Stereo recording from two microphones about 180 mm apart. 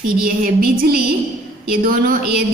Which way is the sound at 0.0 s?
55° right (ahead or behind).